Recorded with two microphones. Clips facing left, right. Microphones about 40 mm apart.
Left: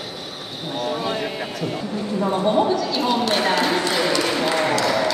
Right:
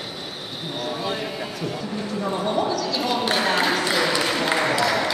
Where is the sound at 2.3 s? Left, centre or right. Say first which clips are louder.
Left 5 dB; left.